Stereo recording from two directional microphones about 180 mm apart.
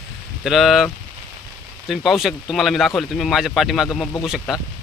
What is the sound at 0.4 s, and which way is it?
Speech, centre (ahead or behind).